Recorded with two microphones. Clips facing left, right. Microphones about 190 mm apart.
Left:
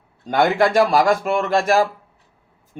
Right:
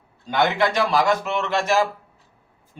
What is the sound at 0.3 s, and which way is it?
A man's voice, 50° left (ahead or behind).